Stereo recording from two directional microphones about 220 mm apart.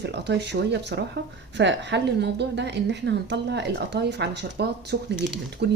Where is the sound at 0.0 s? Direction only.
50° right (ahead or behind).